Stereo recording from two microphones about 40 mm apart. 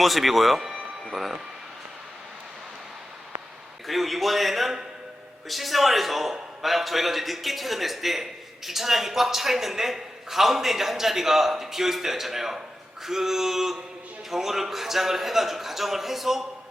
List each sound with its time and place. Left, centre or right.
0.0 s a man's voice: centre
0.6 s a sound: centre
1.1 s a man's voice: centre
3.8 s a man's voice: centre